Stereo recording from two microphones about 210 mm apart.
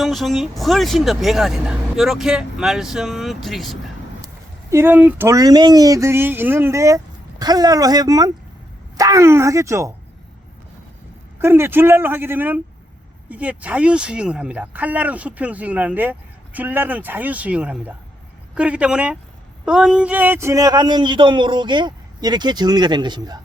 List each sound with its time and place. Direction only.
0.0 s speech: centre (ahead or behind)
4.7 s speech: 10° right (ahead or behind)
11.3 s a man's voice: 10° right (ahead or behind)